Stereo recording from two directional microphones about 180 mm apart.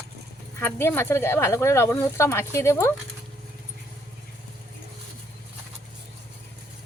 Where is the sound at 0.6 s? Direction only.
10° left (ahead or behind).